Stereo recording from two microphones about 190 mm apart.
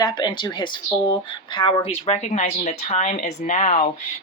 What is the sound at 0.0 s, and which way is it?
Speech, 25° left (ahead or behind).